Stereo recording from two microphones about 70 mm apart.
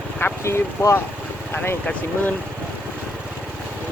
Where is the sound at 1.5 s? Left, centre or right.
Left.